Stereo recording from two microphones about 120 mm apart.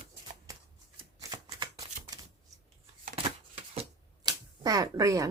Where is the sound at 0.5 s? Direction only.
30° right (ahead or behind).